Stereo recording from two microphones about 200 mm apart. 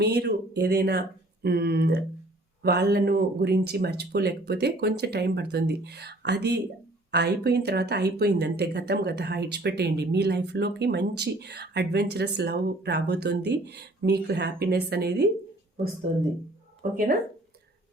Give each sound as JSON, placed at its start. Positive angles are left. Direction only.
{"t": 0.0, "sound": "speech", "side_deg": -55}